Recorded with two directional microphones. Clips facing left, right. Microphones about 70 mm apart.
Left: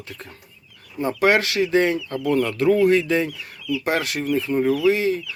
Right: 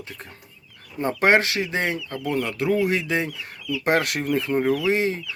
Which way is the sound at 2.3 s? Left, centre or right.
Centre.